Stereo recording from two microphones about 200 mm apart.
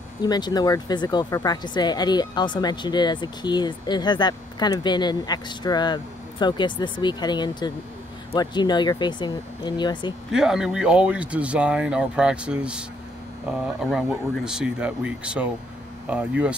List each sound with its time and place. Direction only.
0.2 s speech: 20° left (ahead or behind)
10.3 s speech: centre (ahead or behind)